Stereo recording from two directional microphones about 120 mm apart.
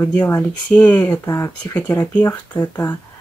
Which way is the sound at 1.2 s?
25° left (ahead or behind).